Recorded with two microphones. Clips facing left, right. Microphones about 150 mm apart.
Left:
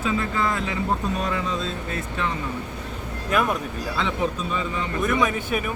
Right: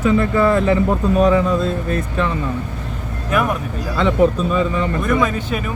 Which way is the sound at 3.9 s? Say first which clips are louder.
Right 11 dB; 55° right (ahead or behind).